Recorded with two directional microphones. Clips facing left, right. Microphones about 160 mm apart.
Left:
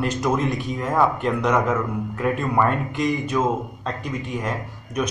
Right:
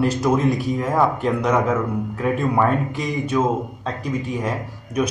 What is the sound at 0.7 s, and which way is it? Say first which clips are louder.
Speech: right 1 dB; 5° right (ahead or behind).